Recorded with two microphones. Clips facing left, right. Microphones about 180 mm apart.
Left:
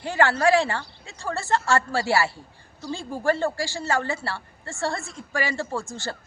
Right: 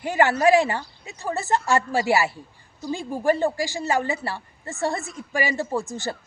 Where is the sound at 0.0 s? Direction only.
15° right (ahead or behind).